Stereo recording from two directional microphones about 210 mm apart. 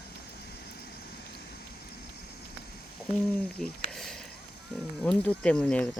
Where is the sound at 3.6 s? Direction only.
Centre (ahead or behind).